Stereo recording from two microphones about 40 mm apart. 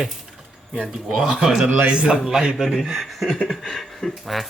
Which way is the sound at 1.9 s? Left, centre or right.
Right.